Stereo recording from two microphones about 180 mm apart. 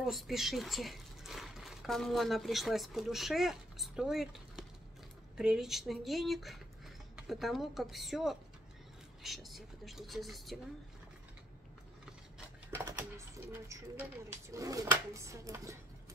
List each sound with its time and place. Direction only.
0.0 s speech: centre (ahead or behind)
13.5 s speech: 10° right (ahead or behind)